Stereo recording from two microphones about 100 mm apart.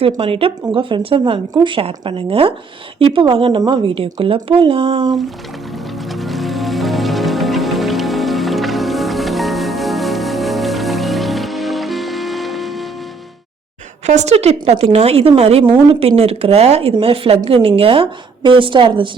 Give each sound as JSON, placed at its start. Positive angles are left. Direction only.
{"t": 0.0, "sound": "speech", "side_deg": -70}
{"t": 6.1, "sound": "music", "side_deg": 0}
{"t": 14.3, "sound": "a woman's voice", "side_deg": -90}
{"t": 15.7, "sound": "speech", "side_deg": -70}